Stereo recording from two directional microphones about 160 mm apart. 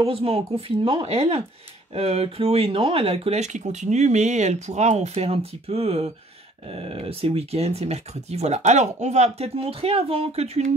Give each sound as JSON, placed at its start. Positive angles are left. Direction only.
{"t": 0.0, "sound": "speech", "side_deg": -35}